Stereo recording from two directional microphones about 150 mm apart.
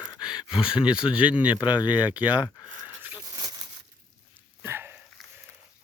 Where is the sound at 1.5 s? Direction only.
30° left (ahead or behind).